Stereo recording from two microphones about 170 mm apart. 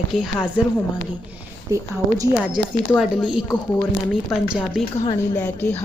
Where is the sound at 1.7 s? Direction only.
20° right (ahead or behind).